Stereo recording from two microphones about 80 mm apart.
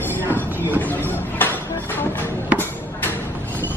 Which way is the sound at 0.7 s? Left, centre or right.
Left.